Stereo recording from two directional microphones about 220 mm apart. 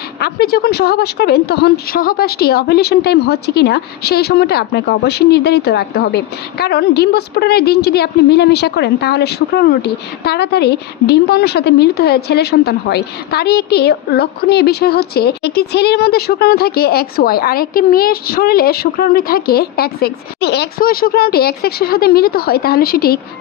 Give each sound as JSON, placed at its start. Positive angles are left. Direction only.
{"t": 0.2, "sound": "a woman's voice", "side_deg": 45}